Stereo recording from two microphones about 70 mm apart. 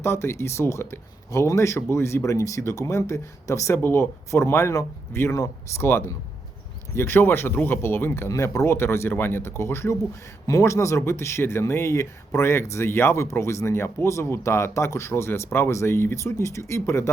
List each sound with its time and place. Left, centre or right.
0.0 s speech: left
3.8 s speech: left
8.3 s speech: left